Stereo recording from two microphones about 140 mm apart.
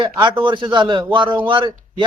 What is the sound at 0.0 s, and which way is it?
Speech, 35° right (ahead or behind).